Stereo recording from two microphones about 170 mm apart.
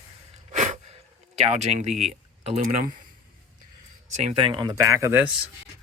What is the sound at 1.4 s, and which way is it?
Speech, 40° right (ahead or behind).